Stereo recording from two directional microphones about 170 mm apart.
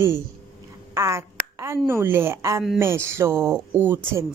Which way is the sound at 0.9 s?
20° right (ahead or behind).